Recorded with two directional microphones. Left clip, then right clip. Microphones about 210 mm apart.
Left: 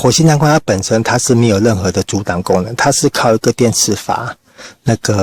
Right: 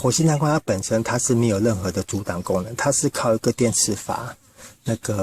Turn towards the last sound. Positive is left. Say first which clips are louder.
# left 11 dB
turn(degrees=35)  # may be behind; listen again after turning